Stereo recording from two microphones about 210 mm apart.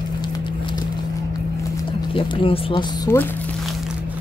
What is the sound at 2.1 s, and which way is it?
Speech, 25° left (ahead or behind).